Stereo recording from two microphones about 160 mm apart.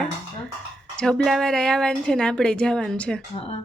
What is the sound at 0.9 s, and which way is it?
A woman's voice, 5° left (ahead or behind).